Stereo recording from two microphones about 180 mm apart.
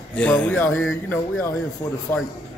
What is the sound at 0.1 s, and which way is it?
A man's voice, 5° left (ahead or behind).